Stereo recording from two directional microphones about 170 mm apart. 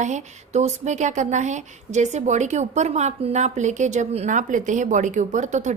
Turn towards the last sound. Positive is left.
turn(degrees=-45)  # may be behind; listen again after turning